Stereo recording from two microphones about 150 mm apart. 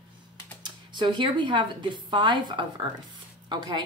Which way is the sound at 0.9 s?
30° right (ahead or behind).